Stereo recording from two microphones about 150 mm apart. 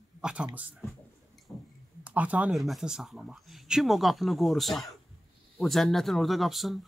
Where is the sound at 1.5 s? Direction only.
15° left (ahead or behind).